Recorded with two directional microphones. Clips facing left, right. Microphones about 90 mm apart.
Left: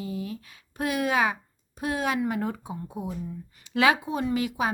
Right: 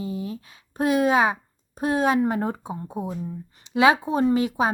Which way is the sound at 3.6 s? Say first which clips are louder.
Right 3 dB; 25° right (ahead or behind).